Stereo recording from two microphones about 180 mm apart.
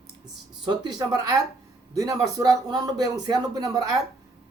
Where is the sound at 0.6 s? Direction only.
25° right (ahead or behind).